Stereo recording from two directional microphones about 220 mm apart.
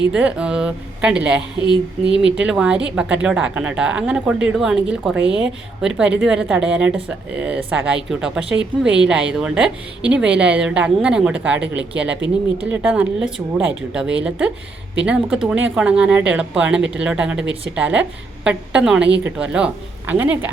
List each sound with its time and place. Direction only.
0.1 s a woman's voice: 5° right (ahead or behind)
1.6 s speech: 20° left (ahead or behind)
2.3 s a woman's voice: 5° right (ahead or behind)